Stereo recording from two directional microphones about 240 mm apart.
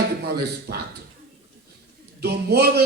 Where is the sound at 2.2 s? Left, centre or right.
Right.